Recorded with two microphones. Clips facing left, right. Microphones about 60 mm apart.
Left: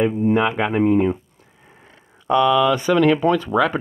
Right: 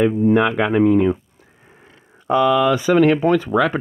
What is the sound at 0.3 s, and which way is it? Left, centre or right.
Speech, right.